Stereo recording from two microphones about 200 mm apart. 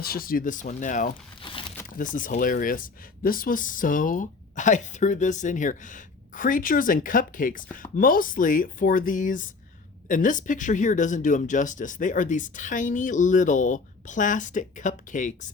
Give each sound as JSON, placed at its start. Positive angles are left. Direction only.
{"t": 0.0, "sound": "speech", "side_deg": 50}
{"t": 1.4, "sound": "crumpling", "side_deg": 25}
{"t": 2.0, "sound": "speech", "side_deg": 40}